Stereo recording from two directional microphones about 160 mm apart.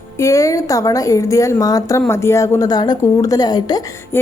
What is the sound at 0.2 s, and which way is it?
A woman's voice, 20° left (ahead or behind).